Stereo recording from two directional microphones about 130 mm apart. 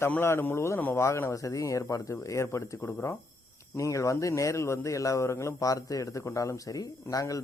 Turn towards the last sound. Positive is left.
turn(degrees=25)  # may be behind; listen again after turning